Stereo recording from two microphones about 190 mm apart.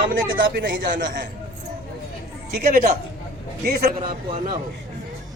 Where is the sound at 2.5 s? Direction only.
55° right (ahead or behind).